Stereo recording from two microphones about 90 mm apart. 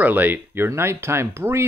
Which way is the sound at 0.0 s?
20° right (ahead or behind).